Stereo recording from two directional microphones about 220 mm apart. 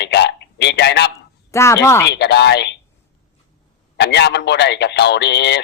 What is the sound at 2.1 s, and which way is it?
Speech, 50° left (ahead or behind).